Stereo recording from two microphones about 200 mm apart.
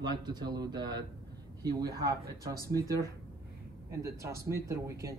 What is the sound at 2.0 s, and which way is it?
Speech, 15° right (ahead or behind).